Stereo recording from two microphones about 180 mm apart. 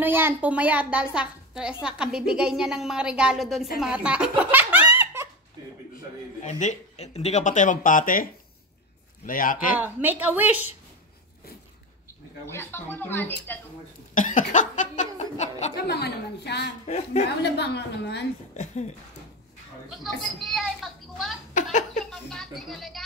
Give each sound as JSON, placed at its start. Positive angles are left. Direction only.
{"t": 0.0, "sound": "a child's voice", "side_deg": -10}
{"t": 3.8, "sound": "giggle", "side_deg": -5}
{"t": 6.4, "sound": "speech", "side_deg": 40}
{"t": 9.8, "sound": "a child's voice", "side_deg": -10}
{"t": 12.4, "sound": "speech", "side_deg": 15}
{"t": 14.1, "sound": "speech", "side_deg": 45}
{"t": 15.8, "sound": "a woman's voice", "side_deg": 65}
{"t": 16.8, "sound": "speech", "side_deg": 40}
{"t": 17.4, "sound": "a woman's voice", "side_deg": 70}
{"t": 20.0, "sound": "a woman's voice", "side_deg": 0}
{"t": 22.1, "sound": "music", "side_deg": 0}